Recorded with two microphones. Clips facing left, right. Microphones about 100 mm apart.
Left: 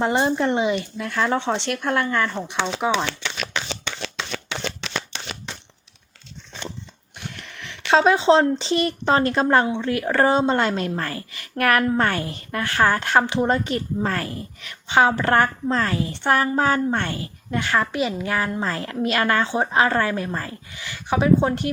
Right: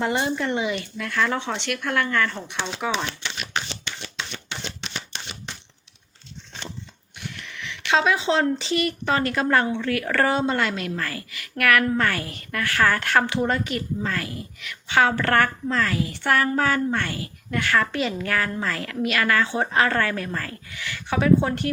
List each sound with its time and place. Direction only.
0.0 s a woman's voice: 35° left (ahead or behind)
3.1 s shuffling cards: 90° left
7.3 s a woman's voice: 40° left (ahead or behind)
14.8 s a woman's voice: 20° left (ahead or behind)